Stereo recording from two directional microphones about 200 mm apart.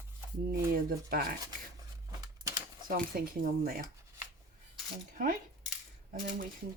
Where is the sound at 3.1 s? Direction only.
50° right (ahead or behind).